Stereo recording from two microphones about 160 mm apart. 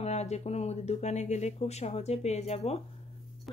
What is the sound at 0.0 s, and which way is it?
Speech, 45° left (ahead or behind).